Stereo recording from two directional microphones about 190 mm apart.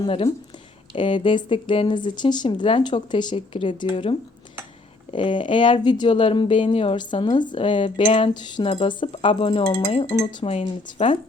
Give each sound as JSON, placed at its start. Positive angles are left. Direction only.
{"t": 0.0, "sound": "speech", "side_deg": 30}